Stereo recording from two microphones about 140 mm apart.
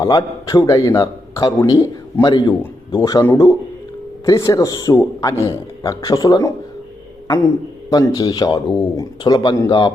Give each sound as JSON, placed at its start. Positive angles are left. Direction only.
{"t": 0.0, "sound": "a man's voice", "side_deg": 25}
{"t": 7.9, "sound": "speech", "side_deg": 25}